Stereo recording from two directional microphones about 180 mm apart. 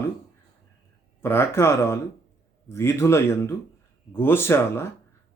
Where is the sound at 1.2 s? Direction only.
15° left (ahead or behind).